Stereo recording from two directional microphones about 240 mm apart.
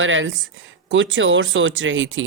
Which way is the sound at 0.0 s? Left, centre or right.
Right.